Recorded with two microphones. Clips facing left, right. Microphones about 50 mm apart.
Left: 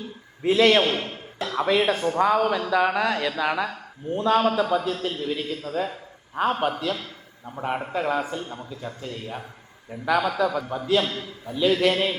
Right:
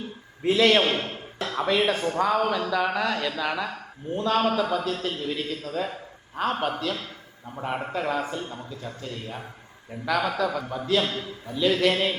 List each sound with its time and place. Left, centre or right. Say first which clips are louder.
0.4 s speech: left 2 dB; centre
1.0 s a sound: left 1 dB; right
1.6 s speech: left 2 dB; centre